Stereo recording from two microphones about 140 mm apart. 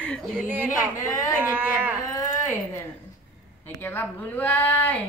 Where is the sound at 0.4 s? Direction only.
15° right (ahead or behind).